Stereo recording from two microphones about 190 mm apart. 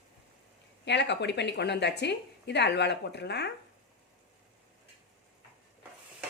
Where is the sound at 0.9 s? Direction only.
65° left (ahead or behind).